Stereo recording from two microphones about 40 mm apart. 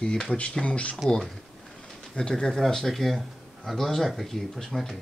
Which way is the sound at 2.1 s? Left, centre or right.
Centre.